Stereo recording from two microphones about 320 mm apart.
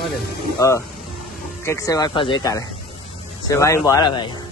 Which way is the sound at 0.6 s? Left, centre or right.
Centre.